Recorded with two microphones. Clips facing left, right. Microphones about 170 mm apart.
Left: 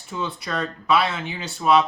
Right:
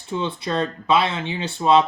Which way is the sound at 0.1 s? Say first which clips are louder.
Right 4 dB; 25° right (ahead or behind).